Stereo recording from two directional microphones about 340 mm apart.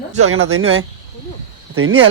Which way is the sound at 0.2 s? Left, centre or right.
Right.